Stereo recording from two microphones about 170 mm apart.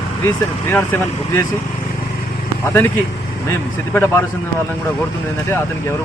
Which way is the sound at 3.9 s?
15° left (ahead or behind).